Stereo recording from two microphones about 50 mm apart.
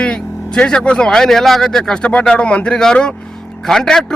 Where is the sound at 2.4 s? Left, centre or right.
Left.